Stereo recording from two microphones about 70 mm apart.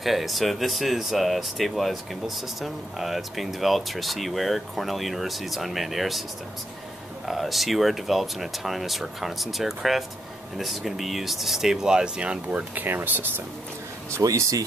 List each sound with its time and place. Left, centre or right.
0.0 s speech: centre
7.2 s speech: centre; by 13.3 s right
14.1 s speech: right